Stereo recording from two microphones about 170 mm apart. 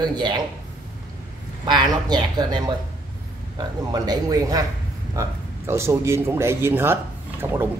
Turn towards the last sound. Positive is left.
turn(degrees=-15)  # may be behind; listen again after turning